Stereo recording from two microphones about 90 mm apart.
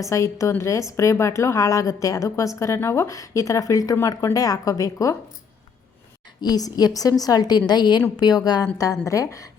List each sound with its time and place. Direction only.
0.0 s a woman's voice: 35° left (ahead or behind)
6.4 s a woman's voice: 45° left (ahead or behind)